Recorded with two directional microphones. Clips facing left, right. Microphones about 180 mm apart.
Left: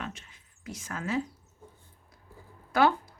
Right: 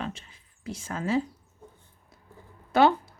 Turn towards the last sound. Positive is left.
turn(degrees=-25)  # may be behind; listen again after turning